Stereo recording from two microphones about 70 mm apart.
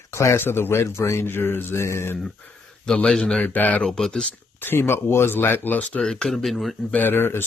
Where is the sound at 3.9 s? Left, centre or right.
Centre.